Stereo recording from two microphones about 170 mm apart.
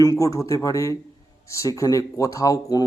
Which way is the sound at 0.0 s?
20° left (ahead or behind).